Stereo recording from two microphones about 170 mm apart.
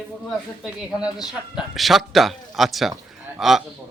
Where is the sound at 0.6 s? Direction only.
5° right (ahead or behind).